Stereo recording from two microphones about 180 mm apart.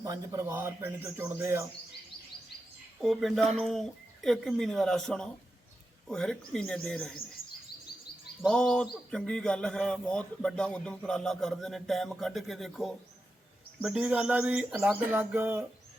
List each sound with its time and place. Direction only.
0.0 s speech: 20° right (ahead or behind)
3.0 s a man's voice: centre (ahead or behind)
8.4 s a man's voice: 5° left (ahead or behind)